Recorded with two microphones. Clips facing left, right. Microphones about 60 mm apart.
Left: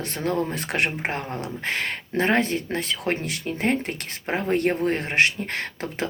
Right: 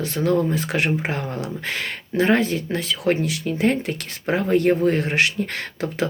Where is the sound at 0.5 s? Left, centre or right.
Left.